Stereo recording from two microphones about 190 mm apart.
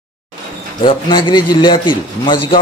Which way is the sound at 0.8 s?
25° left (ahead or behind).